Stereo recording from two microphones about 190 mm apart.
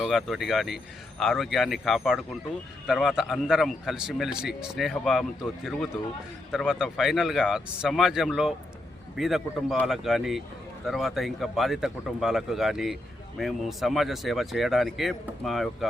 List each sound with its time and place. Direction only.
0.0 s a man's voice: centre (ahead or behind)